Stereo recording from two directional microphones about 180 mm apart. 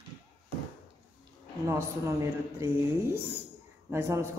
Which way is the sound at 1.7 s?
15° right (ahead or behind).